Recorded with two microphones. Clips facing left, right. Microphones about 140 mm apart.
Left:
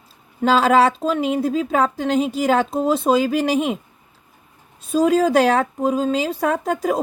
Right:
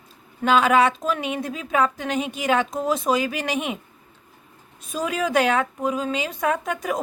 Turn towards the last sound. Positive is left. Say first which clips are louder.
# left 4 dB
turn(degrees=35)  # may be behind; listen again after turning